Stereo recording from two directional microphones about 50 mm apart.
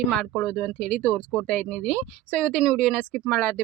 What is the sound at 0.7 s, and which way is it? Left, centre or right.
Speech, left.